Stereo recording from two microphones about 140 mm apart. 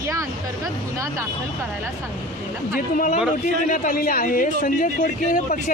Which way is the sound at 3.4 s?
65° left (ahead or behind).